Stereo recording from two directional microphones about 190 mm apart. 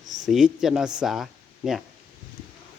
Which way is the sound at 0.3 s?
Centre (ahead or behind).